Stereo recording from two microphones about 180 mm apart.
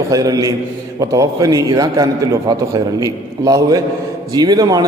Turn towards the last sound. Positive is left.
turn(degrees=-20)  # may be behind; listen again after turning